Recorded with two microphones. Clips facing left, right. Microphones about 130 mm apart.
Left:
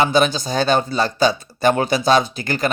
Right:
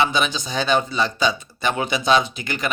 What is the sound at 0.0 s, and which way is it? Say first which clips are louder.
Speech: left 5 dB; 40° left (ahead or behind).